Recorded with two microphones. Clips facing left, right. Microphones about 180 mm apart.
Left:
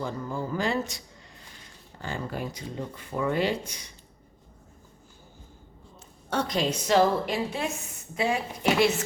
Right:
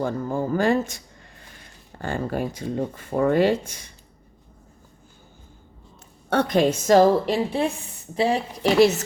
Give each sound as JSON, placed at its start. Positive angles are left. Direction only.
{"t": 0.0, "sound": "speech", "side_deg": -55}
{"t": 6.3, "sound": "speech", "side_deg": -60}